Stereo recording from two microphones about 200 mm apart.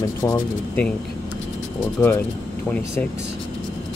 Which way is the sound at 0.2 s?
15° left (ahead or behind).